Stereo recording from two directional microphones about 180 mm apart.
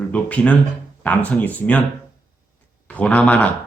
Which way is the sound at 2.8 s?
5° left (ahead or behind).